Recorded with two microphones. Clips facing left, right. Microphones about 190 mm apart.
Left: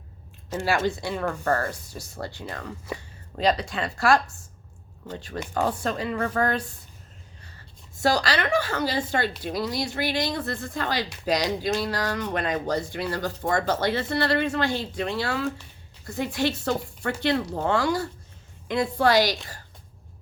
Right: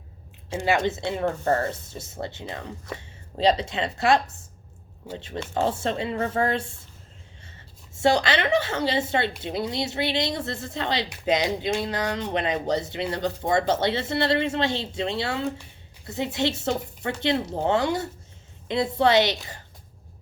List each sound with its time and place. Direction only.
0.5 s speech: 20° right (ahead or behind)
8.0 s speech: 25° right (ahead or behind)